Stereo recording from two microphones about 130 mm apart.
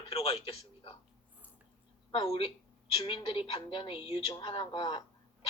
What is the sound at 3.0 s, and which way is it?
A woman's voice, 40° left (ahead or behind).